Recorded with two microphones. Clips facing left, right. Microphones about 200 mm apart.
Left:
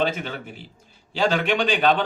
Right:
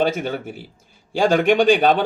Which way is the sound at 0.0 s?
45° right (ahead or behind).